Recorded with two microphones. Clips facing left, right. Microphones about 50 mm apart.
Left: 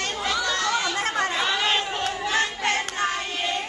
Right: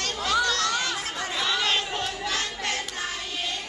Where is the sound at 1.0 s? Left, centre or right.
Left.